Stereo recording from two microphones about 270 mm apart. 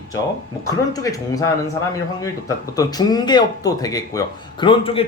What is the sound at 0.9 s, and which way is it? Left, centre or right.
Speech, centre.